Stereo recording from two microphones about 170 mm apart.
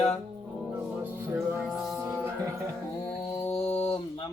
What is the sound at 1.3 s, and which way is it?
Music, 15° right (ahead or behind).